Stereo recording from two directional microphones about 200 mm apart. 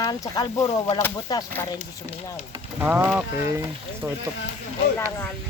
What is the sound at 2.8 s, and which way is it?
Speech, 10° right (ahead or behind).